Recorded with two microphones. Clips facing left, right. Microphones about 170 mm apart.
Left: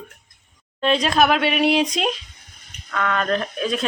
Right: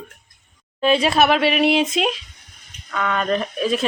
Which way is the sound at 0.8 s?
5° right (ahead or behind).